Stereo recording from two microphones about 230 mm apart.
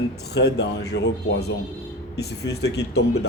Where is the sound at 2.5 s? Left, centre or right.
Left.